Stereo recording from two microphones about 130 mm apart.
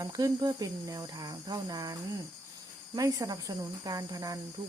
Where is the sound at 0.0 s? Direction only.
30° right (ahead or behind).